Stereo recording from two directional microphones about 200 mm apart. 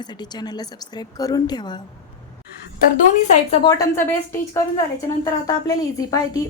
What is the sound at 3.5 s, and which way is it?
Speech, 20° left (ahead or behind).